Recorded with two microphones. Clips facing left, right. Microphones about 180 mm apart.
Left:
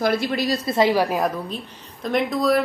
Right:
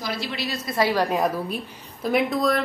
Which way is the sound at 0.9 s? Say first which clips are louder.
Left 1 dB; 5° left (ahead or behind).